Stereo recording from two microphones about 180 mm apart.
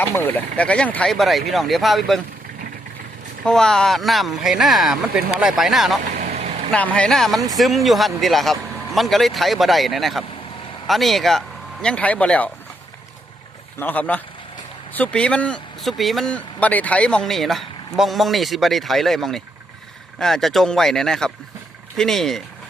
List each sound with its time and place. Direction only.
0.0 s speech: 10° left (ahead or behind)
3.4 s speech: 5° left (ahead or behind)
6.0 s vehicle: 45° right (ahead or behind)
6.7 s speech: 5° left (ahead or behind)
13.7 s a man's voice: 10° left (ahead or behind)